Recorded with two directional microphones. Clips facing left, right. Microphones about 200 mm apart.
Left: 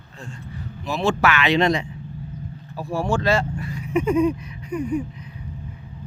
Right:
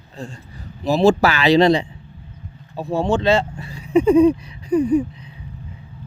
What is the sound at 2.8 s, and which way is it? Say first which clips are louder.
Speech: right 4 dB; 20° right (ahead or behind).